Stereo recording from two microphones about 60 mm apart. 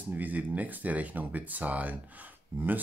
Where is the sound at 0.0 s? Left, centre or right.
Right.